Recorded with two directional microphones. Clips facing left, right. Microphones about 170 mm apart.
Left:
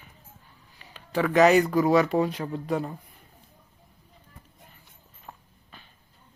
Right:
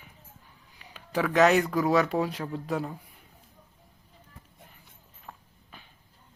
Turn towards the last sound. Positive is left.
turn(degrees=10)  # may be behind; listen again after turning